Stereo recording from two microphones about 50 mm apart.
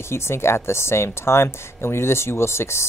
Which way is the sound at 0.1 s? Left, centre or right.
Left.